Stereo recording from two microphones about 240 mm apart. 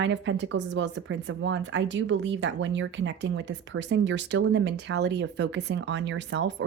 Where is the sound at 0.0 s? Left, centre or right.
Right.